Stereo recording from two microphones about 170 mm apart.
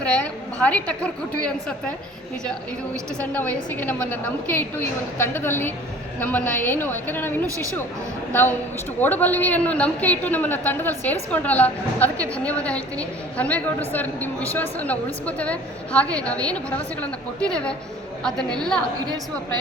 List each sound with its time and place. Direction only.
0.0 s a woman's voice: 10° left (ahead or behind)
3.3 s a woman's voice: 10° left (ahead or behind)
7.4 s a woman's voice: 20° right (ahead or behind)
8.3 s a woman's voice: 10° left (ahead or behind)